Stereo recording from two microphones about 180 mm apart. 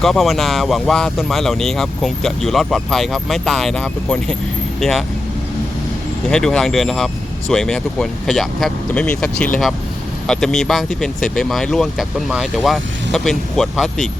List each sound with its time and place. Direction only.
0.0 s speech: centre (ahead or behind)
6.3 s speech: 5° left (ahead or behind)